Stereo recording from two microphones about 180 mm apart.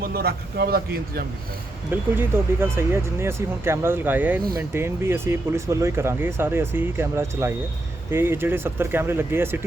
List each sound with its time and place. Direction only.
0.0 s speech: 60° right (ahead or behind)
1.9 s speech: 10° right (ahead or behind)